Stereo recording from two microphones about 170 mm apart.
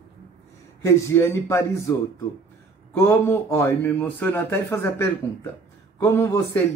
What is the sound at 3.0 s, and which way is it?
A man's voice, 15° left (ahead or behind).